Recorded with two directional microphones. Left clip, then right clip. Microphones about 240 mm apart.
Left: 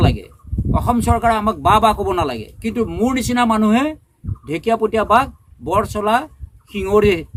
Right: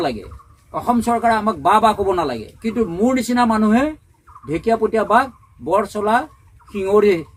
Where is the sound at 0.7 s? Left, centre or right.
Left.